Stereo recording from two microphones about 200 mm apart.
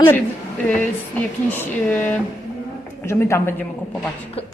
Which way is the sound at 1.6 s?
10° left (ahead or behind).